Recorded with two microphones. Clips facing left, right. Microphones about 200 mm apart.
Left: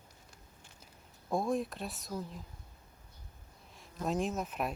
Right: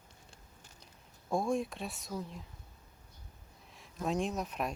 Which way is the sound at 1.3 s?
Centre (ahead or behind).